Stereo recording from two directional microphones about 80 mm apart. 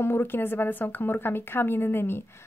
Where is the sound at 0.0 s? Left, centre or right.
Left.